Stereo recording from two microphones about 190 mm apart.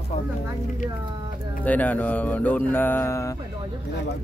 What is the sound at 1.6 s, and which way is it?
Mantra, 10° left (ahead or behind).